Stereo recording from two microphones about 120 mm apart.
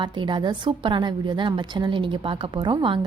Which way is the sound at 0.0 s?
40° right (ahead or behind).